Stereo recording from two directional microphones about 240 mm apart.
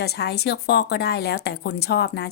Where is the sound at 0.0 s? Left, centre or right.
Left.